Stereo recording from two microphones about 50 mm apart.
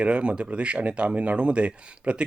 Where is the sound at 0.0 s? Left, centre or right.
Right.